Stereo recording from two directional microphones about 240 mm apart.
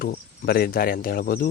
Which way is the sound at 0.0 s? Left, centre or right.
Left.